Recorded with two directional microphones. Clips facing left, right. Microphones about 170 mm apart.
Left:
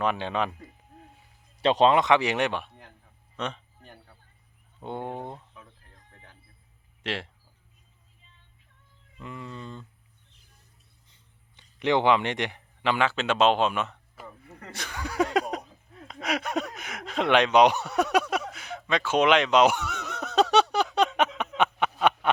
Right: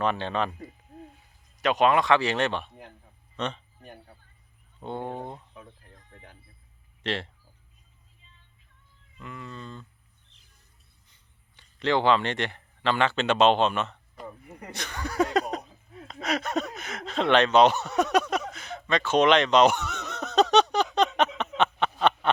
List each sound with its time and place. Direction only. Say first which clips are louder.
0.0 s speech: even; 10° left (ahead or behind)
1.5 s speech: left 2 dB; 30° left (ahead or behind); by 3.6 s 5° left (ahead or behind)
3.8 s a sound: right 4 dB; 20° right (ahead or behind)
4.8 s speech: even; 15° left (ahead or behind)
7.0 s speech: right 2 dB; 10° left (ahead or behind)
9.1 s cat: left 1 dB; 20° left (ahead or behind)
11.1 s a sound: left 2 dB; 20° left (ahead or behind)
14.7 s speech: right 1 dB; 10° left (ahead or behind)
21.6 s a sound: even; 10° left (ahead or behind)